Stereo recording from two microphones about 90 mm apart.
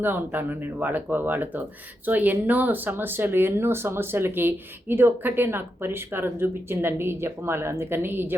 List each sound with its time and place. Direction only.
0.0 s speech: 25° right (ahead or behind)